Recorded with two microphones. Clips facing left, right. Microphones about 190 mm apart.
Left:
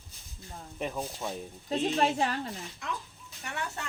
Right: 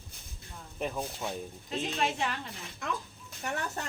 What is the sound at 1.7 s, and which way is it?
Speech, 35° left (ahead or behind).